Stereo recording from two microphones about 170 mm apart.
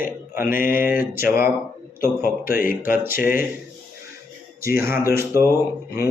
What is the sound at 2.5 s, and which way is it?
Speech, 55° left (ahead or behind).